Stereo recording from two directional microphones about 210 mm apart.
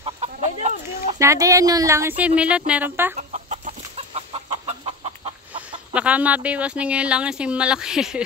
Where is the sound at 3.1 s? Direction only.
35° right (ahead or behind).